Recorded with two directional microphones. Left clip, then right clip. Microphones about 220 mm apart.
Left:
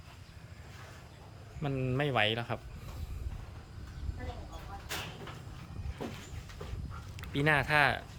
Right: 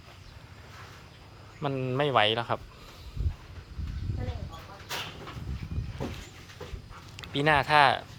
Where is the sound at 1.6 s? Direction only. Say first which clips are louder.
Right 5 dB; 10° left (ahead or behind).